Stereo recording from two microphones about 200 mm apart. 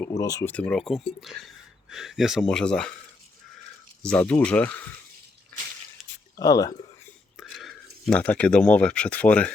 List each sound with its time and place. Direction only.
0.0 s speech: 15° left (ahead or behind)
4.0 s speech: 5° left (ahead or behind)
6.0 s a sound: centre (ahead or behind)
6.3 s speech: 15° left (ahead or behind)
7.3 s speech: centre (ahead or behind)